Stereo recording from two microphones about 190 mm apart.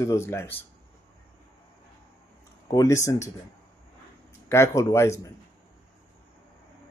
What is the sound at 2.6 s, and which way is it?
Speech, 20° left (ahead or behind).